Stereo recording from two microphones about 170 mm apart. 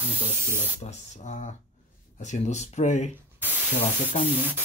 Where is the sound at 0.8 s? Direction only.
40° left (ahead or behind).